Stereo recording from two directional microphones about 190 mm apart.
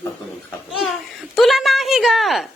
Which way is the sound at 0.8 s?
Centre (ahead or behind).